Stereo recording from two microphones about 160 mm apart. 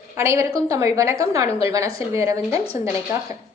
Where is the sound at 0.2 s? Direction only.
15° right (ahead or behind).